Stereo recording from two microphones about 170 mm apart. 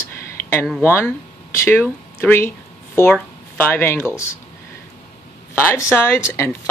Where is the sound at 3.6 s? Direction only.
10° left (ahead or behind).